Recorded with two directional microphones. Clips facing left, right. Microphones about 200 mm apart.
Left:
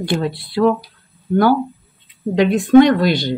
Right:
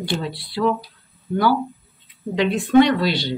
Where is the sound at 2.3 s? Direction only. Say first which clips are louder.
Left 5 dB; 50° left (ahead or behind).